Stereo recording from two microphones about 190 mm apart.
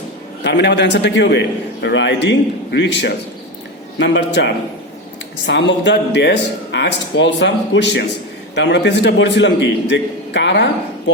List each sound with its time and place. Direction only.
0.4 s a man's voice: 65° left (ahead or behind)